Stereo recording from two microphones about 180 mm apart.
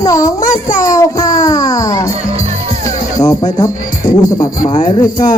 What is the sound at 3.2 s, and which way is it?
Speech, 20° left (ahead or behind).